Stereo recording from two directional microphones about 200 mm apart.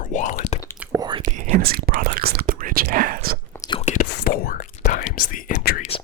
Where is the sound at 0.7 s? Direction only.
10° right (ahead or behind).